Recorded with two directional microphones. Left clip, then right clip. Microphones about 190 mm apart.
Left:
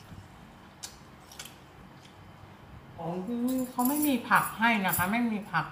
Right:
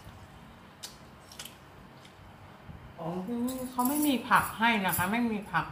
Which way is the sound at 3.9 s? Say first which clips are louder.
Even; centre (ahead or behind).